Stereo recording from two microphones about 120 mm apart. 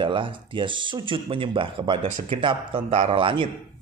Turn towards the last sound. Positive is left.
turn(degrees=-45)  # may be behind; listen again after turning